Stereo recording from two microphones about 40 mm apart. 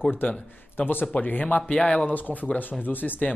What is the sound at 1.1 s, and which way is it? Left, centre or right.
Speech, left.